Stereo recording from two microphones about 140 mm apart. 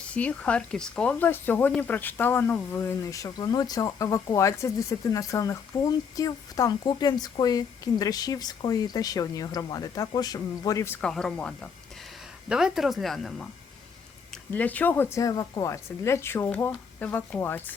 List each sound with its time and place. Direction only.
0.1 s speech: 10° left (ahead or behind)
11.0 s speech: 5° left (ahead or behind)
14.5 s speech: 10° left (ahead or behind)
15.2 s speech: 25° left (ahead or behind)